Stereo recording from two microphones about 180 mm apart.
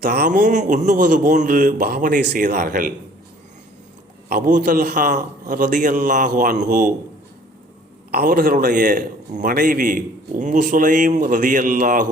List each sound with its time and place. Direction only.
0.0 s a man's voice: 65° right (ahead or behind)
0.3 s a man's voice: 45° right (ahead or behind)
4.3 s a man's voice: 45° right (ahead or behind)
8.1 s a man's voice: 60° right (ahead or behind)